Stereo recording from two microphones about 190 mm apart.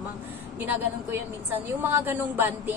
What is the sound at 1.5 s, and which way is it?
A woman's voice, 10° right (ahead or behind).